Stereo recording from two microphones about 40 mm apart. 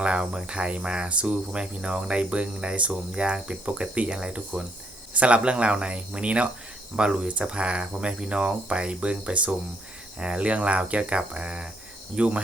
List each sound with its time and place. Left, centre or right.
0.0 s speech: right